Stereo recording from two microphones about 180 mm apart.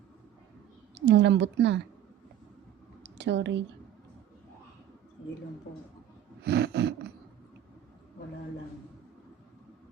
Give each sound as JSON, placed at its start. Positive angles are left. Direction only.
{"t": 0.9, "sound": "a woman's voice", "side_deg": -75}
{"t": 3.0, "sound": "a sound", "side_deg": -75}
{"t": 6.4, "sound": "a woman's voice", "side_deg": -65}